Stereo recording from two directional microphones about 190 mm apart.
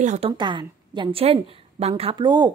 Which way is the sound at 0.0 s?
40° right (ahead or behind).